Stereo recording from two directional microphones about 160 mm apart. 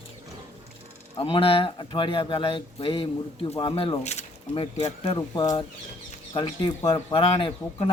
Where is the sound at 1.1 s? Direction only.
35° left (ahead or behind).